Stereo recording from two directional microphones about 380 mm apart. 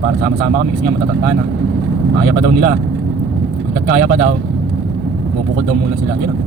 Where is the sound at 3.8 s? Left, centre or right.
Right.